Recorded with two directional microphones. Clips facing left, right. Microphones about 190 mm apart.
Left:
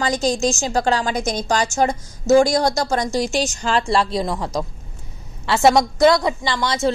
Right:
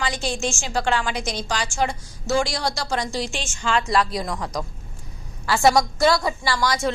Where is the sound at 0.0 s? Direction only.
40° left (ahead or behind).